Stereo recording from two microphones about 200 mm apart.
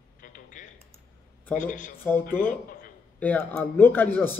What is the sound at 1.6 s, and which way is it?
Speech, 40° left (ahead or behind).